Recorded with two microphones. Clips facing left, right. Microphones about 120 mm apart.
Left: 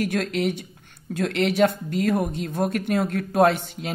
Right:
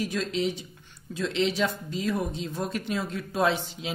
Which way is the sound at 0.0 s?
60° left (ahead or behind).